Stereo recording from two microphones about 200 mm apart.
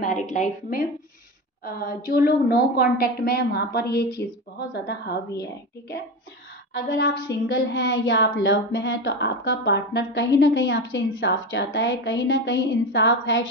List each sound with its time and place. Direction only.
0.0 s a woman's voice: 40° left (ahead or behind)
6.7 s a woman's voice: 60° left (ahead or behind)